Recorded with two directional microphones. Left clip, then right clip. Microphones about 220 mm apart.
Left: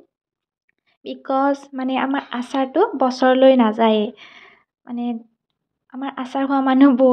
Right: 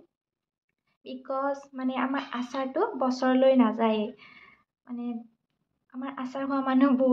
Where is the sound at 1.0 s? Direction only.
35° left (ahead or behind).